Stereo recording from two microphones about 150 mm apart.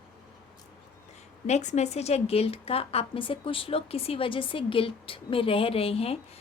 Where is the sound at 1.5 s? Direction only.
50° left (ahead or behind).